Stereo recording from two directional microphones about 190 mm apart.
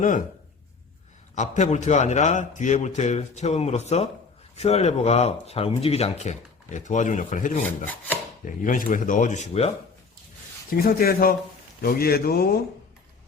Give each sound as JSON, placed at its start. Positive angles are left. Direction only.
{"t": 1.4, "sound": "speech", "side_deg": 40}
{"t": 7.9, "sound": "chopping", "side_deg": 10}
{"t": 8.4, "sound": "speech", "side_deg": 45}
{"t": 10.7, "sound": "speech", "side_deg": 50}